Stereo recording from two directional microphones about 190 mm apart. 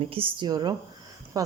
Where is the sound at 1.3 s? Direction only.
20° right (ahead or behind).